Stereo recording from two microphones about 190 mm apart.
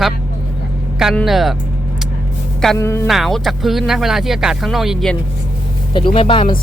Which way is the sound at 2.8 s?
15° left (ahead or behind).